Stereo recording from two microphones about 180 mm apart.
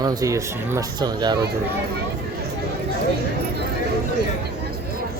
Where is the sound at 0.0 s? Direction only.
20° right (ahead or behind).